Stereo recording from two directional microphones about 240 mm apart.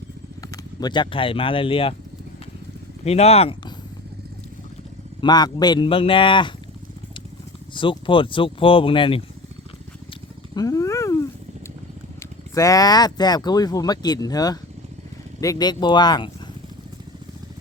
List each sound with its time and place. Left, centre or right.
0.5 s speech: centre
3.0 s speech: left
5.2 s speech: centre
7.7 s speech: left
10.5 s dog: centre
12.2 s speech: centre